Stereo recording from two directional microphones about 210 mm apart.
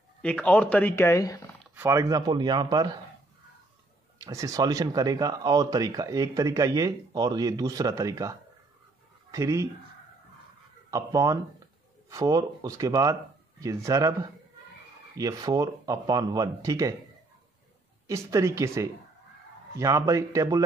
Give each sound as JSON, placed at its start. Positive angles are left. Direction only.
{"t": 0.2, "sound": "speech", "side_deg": 5}
{"t": 1.8, "sound": "a man's voice", "side_deg": -15}
{"t": 4.2, "sound": "speech", "side_deg": -15}
{"t": 10.9, "sound": "speech", "side_deg": -15}
{"t": 15.1, "sound": "speech", "side_deg": -15}
{"t": 18.0, "sound": "speech", "side_deg": -15}